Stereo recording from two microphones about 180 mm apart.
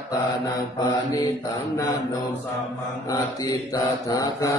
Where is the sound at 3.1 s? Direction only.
20° left (ahead or behind).